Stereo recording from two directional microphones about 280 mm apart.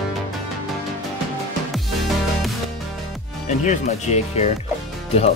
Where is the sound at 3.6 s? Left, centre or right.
Left.